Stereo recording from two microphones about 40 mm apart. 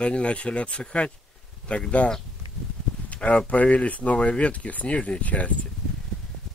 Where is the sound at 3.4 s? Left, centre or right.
Left.